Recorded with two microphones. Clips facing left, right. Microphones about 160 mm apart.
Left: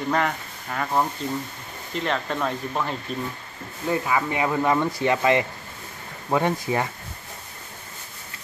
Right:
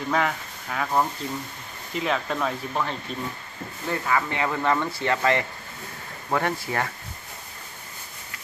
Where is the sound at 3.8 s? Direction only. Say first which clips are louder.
Left 2 dB; 15° left (ahead or behind).